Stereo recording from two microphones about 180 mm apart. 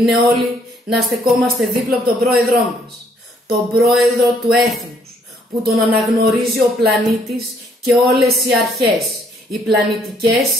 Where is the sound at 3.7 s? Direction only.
Centre (ahead or behind).